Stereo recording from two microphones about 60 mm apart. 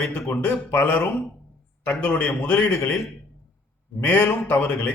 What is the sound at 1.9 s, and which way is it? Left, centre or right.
Speech, left.